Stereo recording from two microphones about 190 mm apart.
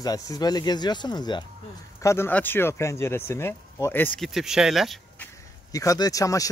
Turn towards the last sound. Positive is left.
turn(degrees=15)  # may be behind; listen again after turning